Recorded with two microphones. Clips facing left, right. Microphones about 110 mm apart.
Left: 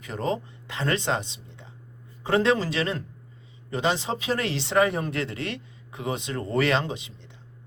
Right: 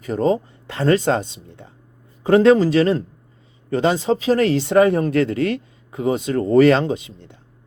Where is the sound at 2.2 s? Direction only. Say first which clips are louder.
Right 10 dB; 35° right (ahead or behind).